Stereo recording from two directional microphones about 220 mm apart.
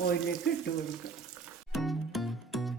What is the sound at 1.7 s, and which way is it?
Music, centre (ahead or behind).